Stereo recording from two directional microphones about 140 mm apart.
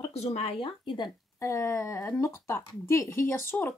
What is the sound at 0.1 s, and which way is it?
Speech, 50° left (ahead or behind).